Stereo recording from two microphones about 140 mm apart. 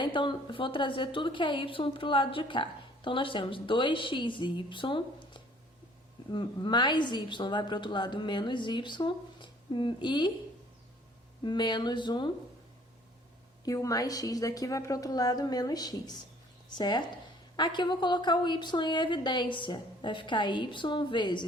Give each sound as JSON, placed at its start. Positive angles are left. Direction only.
{"t": 0.0, "sound": "a woman's voice", "side_deg": 35}
{"t": 11.4, "sound": "a woman's voice", "side_deg": 30}
{"t": 13.7, "sound": "a woman's voice", "side_deg": 25}